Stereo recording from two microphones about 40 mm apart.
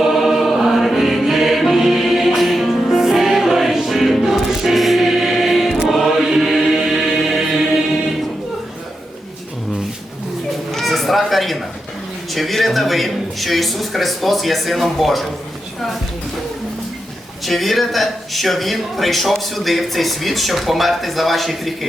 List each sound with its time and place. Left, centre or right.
0.0 s music: centre
10.7 s a sound: centre
12.3 s a man's voice: centre
17.4 s a man's voice: centre